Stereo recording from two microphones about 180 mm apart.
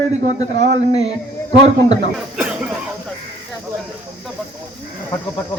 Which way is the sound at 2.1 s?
5° right (ahead or behind).